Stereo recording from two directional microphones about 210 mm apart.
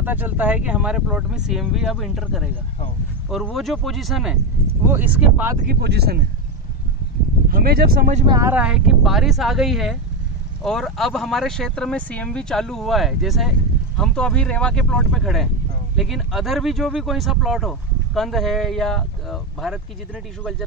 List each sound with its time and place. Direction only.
0.0 s speech: 10° right (ahead or behind)
5.7 s speech: 50° right (ahead or behind)
7.4 s speech: 45° right (ahead or behind)
8.4 s speech: 10° right (ahead or behind)